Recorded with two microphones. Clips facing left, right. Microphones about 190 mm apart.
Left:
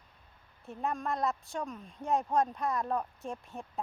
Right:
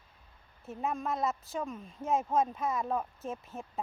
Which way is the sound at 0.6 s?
Centre (ahead or behind).